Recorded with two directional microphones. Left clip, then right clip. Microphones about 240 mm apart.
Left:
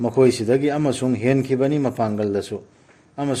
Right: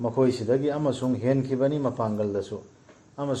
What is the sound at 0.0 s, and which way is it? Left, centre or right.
A man's voice, left.